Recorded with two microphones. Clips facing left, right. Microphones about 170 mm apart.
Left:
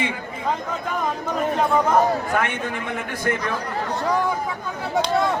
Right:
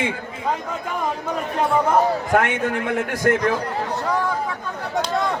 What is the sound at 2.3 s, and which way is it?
A man's voice, 80° right.